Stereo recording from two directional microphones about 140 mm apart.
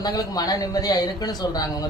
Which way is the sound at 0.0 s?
25° left (ahead or behind).